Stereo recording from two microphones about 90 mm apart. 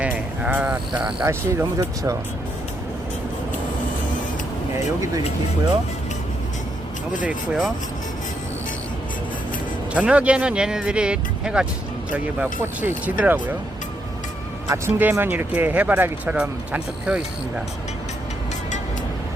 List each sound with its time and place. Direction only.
0.0 s a sound: 15° right (ahead or behind)
1.2 s speech: 25° right (ahead or behind)
7.3 s speech: 5° right (ahead or behind)
9.9 s speech: 15° right (ahead or behind)
14.8 s speech: 20° right (ahead or behind)